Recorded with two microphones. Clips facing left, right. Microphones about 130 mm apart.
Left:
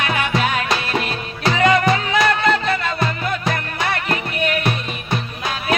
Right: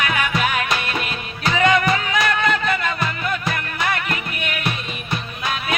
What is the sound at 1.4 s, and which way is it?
Music, 35° left (ahead or behind).